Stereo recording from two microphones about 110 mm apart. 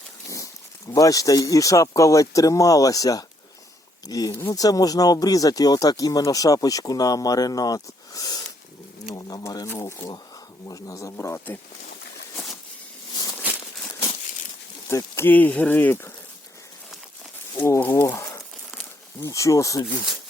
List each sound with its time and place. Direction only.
0.3 s speech: 30° left (ahead or behind)
9.6 s speech: 25° left (ahead or behind)
13.5 s a sound: 15° right (ahead or behind)
14.8 s speech: 25° left (ahead or behind)
17.6 s speech: 20° left (ahead or behind)